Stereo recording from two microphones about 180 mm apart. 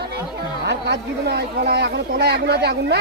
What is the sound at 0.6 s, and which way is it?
Speech, 70° right (ahead or behind).